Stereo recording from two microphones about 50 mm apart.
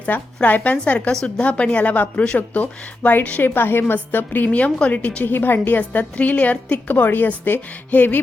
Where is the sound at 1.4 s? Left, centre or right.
Left.